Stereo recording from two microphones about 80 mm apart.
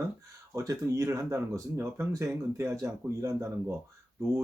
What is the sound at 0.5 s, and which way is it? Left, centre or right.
Speech, right.